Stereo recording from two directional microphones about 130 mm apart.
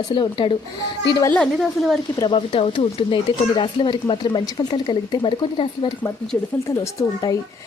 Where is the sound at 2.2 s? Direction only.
40° left (ahead or behind).